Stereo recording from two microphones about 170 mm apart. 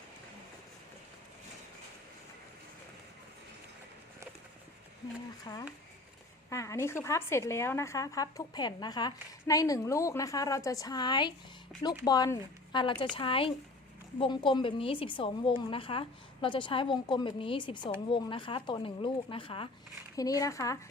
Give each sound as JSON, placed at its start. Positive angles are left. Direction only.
{"t": 5.5, "sound": "a woman's voice", "side_deg": 25}
{"t": 11.7, "sound": "speech", "side_deg": 0}
{"t": 12.0, "sound": "a woman's voice", "side_deg": 25}
{"t": 20.1, "sound": "a woman's voice", "side_deg": 20}